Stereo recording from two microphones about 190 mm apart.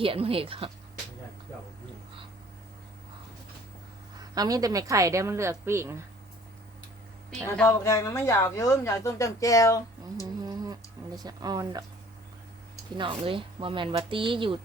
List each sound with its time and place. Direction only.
0.0 s speech: 30° right (ahead or behind)
4.2 s a woman's voice: 20° right (ahead or behind)
7.3 s speech: 5° left (ahead or behind)
10.4 s a sound: 20° right (ahead or behind)
13.0 s speech: 25° right (ahead or behind)